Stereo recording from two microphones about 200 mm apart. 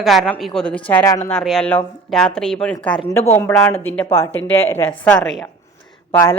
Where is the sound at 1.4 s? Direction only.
Centre (ahead or behind).